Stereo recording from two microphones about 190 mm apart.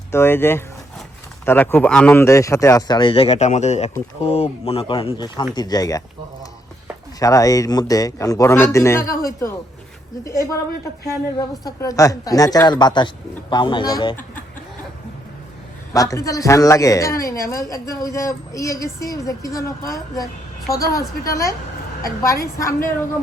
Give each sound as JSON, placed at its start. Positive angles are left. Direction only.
{"t": 0.1, "sound": "a woman's voice", "side_deg": 10}
{"t": 7.2, "sound": "a woman's voice", "side_deg": 15}
{"t": 11.3, "sound": "speech", "side_deg": 20}
{"t": 15.9, "sound": "a woman's voice", "side_deg": 15}